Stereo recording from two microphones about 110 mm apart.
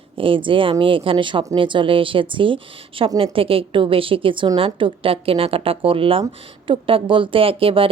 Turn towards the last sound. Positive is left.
turn(degrees=-55)  # may be behind; listen again after turning